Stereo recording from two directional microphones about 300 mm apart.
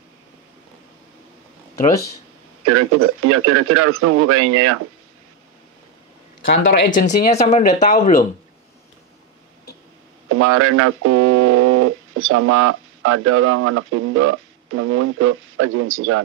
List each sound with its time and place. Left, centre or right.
2.6 s speech: right
6.4 s speech: left
10.3 s speech: right